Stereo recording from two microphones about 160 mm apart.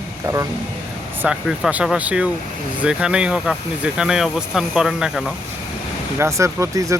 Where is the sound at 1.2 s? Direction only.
5° right (ahead or behind).